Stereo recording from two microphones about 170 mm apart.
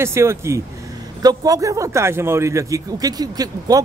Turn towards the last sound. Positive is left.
turn(degrees=-20)  # may be behind; listen again after turning